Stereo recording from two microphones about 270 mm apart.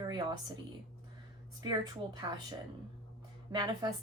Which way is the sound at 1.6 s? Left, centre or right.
Centre.